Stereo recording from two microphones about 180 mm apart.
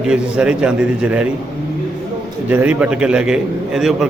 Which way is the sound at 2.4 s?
10° right (ahead or behind).